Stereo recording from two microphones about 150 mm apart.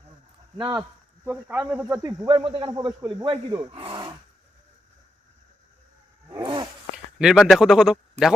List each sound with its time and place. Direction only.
0.5 s speech: 25° right (ahead or behind); by 2.0 s 5° right (ahead or behind)
2.0 s speech: 30° right (ahead or behind)
2.7 s speech: 25° right (ahead or behind)
3.7 s speech: 35° right (ahead or behind)
6.4 s wild animals: 30° right (ahead or behind)
7.2 s a man's voice: centre (ahead or behind)